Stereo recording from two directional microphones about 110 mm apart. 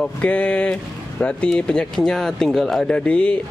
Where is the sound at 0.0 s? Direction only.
10° left (ahead or behind).